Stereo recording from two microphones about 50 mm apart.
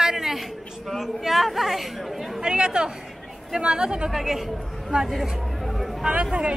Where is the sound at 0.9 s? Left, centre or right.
Centre.